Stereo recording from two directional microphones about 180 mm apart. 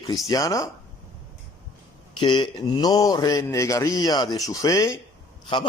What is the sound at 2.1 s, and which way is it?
Speech, 25° left (ahead or behind).